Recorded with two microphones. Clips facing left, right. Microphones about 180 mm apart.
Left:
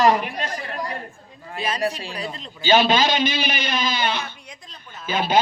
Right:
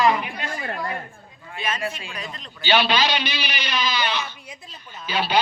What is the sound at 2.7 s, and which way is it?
A man's voice, 45° left (ahead or behind).